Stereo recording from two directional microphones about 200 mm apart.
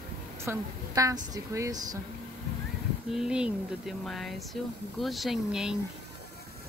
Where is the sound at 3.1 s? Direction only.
5° right (ahead or behind).